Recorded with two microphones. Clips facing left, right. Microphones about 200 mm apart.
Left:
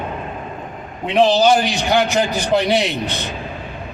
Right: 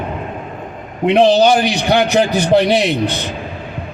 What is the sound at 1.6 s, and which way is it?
Speech, 65° right (ahead or behind).